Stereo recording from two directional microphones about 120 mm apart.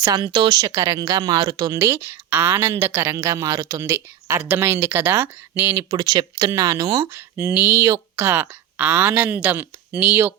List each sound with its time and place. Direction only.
0.3 s speech: 40° right (ahead or behind); by 6.0 s 20° right (ahead or behind)
6.0 s speech: 35° right (ahead or behind); by 10.3 s 15° right (ahead or behind)